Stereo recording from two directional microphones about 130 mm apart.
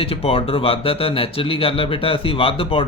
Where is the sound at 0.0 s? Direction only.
50° left (ahead or behind).